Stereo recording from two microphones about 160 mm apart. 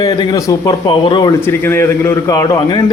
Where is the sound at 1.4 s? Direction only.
15° left (ahead or behind).